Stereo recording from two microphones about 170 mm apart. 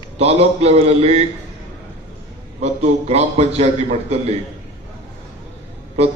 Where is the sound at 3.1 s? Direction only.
40° right (ahead or behind).